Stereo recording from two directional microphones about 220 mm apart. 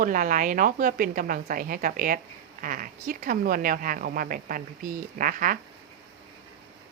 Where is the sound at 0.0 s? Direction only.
40° right (ahead or behind).